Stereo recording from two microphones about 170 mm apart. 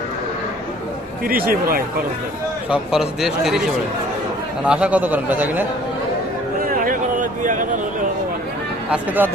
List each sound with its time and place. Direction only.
1.2 s speech: 60° right (ahead or behind)
2.6 s a man's voice: 5° right (ahead or behind)
6.6 s a sound: 55° right (ahead or behind)
8.9 s a man's voice: 10° right (ahead or behind)